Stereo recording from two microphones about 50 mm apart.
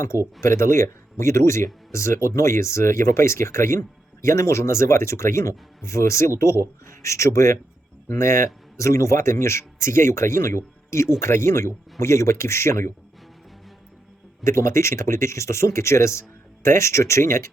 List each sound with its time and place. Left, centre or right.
0.4 s speech: left
4.2 s speech: left
6.8 s speech: left
8.8 s speech: left
11.2 s speech: left
14.4 s speech: left